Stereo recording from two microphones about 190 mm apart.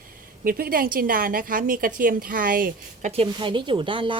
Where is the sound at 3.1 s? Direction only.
30° right (ahead or behind).